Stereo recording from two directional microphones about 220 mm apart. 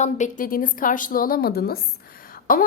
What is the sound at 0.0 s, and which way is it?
A woman's voice, 35° left (ahead or behind).